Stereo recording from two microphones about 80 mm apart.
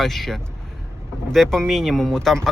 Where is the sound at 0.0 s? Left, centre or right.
Centre.